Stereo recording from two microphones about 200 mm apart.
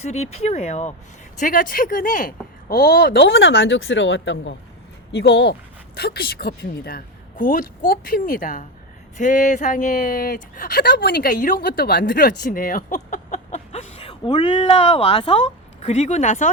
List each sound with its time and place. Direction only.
0.0 s speech: 35° left (ahead or behind); by 4.5 s 65° left (ahead or behind)
5.1 s speech: 55° left (ahead or behind); by 16.5 s 35° left (ahead or behind)